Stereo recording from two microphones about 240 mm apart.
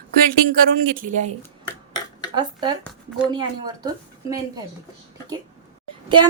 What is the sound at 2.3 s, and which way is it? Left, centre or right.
Speech, centre.